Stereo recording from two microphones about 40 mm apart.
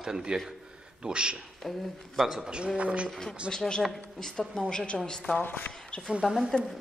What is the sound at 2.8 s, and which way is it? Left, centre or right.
Speech, right.